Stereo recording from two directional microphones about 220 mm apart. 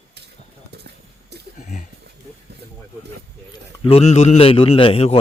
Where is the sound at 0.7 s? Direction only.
50° right (ahead or behind).